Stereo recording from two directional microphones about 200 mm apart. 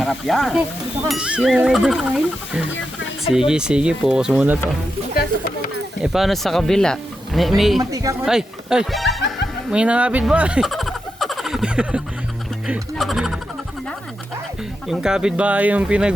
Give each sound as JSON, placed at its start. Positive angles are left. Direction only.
{"t": 0.0, "sound": "speech", "side_deg": 0}
{"t": 5.1, "sound": "speech", "side_deg": 50}
{"t": 6.0, "sound": "speech", "side_deg": 0}
{"t": 7.8, "sound": "speech", "side_deg": -15}
{"t": 8.2, "sound": "speech", "side_deg": -5}
{"t": 9.6, "sound": "a sound", "side_deg": -5}
{"t": 12.6, "sound": "speech", "side_deg": 0}
{"t": 14.8, "sound": "speech", "side_deg": -5}